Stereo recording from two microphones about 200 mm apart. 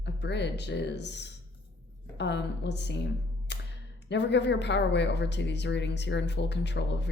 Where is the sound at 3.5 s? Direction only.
60° left (ahead or behind).